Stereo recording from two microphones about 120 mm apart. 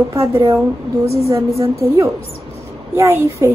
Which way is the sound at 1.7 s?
25° right (ahead or behind).